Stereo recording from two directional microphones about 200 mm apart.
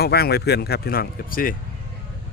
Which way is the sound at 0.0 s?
50° left (ahead or behind).